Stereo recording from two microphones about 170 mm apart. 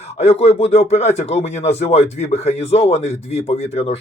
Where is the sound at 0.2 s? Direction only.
40° left (ahead or behind).